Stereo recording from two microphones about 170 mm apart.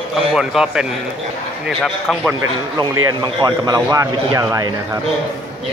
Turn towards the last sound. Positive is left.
turn(degrees=-20)  # may be behind; listen again after turning